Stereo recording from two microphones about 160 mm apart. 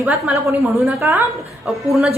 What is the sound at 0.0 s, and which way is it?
Speech, 5° right (ahead or behind).